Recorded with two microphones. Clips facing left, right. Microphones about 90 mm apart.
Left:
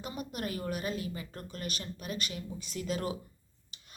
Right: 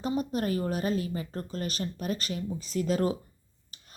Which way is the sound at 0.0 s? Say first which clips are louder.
Right 9 dB; 35° right (ahead or behind).